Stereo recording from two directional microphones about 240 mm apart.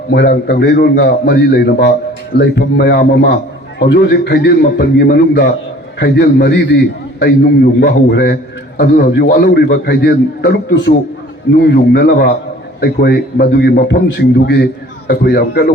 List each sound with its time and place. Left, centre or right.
0.1 s a man's voice: left